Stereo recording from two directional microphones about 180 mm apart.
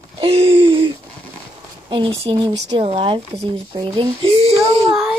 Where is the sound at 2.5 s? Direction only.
75° right (ahead or behind).